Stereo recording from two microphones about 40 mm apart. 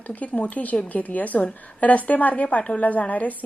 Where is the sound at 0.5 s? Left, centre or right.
Left.